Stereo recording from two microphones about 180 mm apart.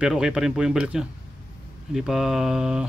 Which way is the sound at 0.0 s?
5° right (ahead or behind).